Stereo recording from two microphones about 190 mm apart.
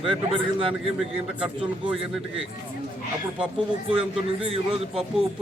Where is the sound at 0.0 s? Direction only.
30° right (ahead or behind).